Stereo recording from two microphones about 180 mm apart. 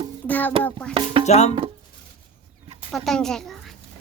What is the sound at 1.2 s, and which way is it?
Speech, 40° left (ahead or behind).